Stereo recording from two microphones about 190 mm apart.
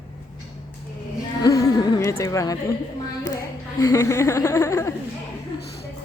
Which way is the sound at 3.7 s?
15° left (ahead or behind).